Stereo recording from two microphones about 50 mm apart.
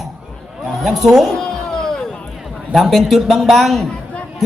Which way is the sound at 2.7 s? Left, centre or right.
Centre.